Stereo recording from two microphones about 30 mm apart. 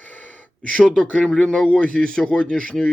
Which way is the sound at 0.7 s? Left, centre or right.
Left.